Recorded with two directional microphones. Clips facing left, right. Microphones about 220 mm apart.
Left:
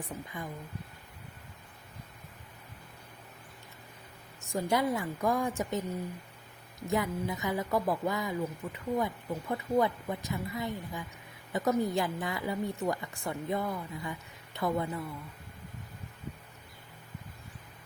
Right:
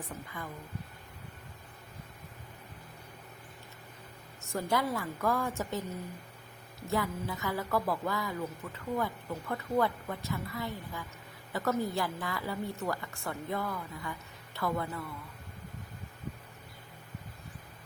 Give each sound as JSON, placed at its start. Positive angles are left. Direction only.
{"t": 0.3, "sound": "speech", "side_deg": 15}
{"t": 4.5, "sound": "speech", "side_deg": 15}